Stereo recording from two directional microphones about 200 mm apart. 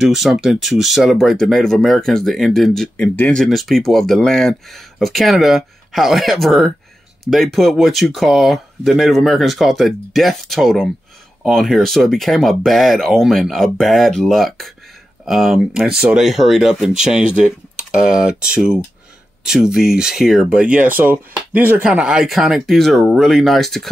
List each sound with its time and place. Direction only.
0.0 s speech: centre (ahead or behind)